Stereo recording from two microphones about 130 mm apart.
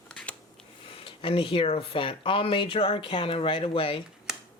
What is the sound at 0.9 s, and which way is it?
Speech, 45° left (ahead or behind).